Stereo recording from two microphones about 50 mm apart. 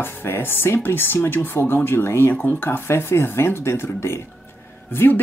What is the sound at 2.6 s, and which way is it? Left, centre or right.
Speech, left.